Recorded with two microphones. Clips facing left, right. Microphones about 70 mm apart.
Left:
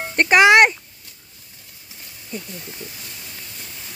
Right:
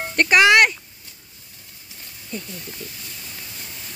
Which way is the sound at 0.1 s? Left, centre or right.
Left.